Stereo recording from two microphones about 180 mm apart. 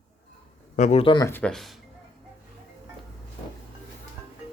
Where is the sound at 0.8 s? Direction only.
35° left (ahead or behind).